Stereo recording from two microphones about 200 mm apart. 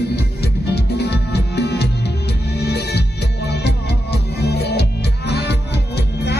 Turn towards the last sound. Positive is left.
turn(degrees=55)  # may be behind; listen again after turning